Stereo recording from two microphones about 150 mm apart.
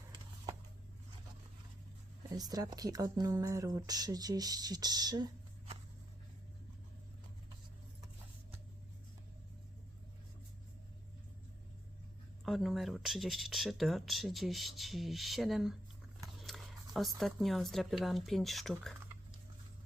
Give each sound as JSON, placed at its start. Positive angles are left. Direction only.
{"t": 2.3, "sound": "speech", "side_deg": -25}
{"t": 12.5, "sound": "speech", "side_deg": 0}
{"t": 16.4, "sound": "a sound", "side_deg": 0}
{"t": 16.9, "sound": "speech", "side_deg": 0}